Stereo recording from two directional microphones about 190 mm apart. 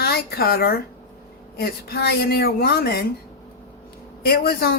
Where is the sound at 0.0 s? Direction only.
55° left (ahead or behind).